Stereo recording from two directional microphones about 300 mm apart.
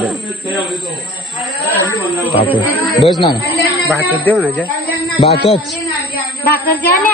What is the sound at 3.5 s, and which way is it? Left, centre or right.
Speech, centre.